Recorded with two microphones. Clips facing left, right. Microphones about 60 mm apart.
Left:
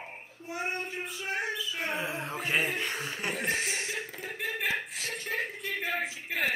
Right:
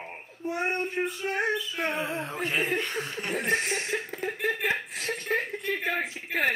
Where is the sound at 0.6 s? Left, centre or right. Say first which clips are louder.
Right 5 dB; right.